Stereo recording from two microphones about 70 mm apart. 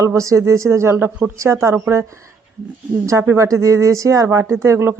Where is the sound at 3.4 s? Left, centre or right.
Right.